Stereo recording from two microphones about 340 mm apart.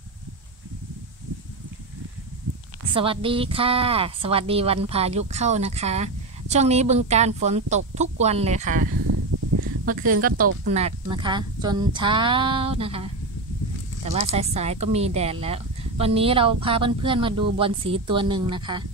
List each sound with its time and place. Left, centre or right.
2.9 s a woman's voice: centre
9.0 s a sound: right
9.8 s a woman's voice: right